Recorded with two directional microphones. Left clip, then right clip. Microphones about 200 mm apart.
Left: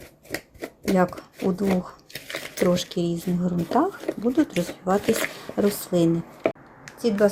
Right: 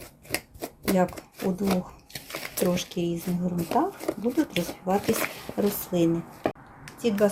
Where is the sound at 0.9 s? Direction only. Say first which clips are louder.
Left 3 dB; 15° left (ahead or behind).